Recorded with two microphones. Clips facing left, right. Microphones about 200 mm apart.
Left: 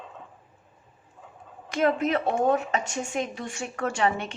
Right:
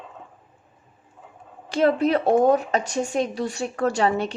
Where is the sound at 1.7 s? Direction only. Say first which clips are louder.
Right 4 dB; 30° right (ahead or behind).